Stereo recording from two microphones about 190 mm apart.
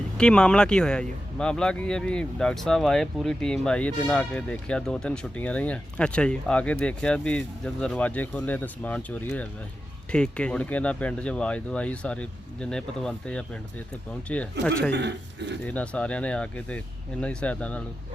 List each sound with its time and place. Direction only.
0.2 s speech: 5° left (ahead or behind)
14.9 s speech: 65° right (ahead or behind)
15.6 s speech: 5° left (ahead or behind)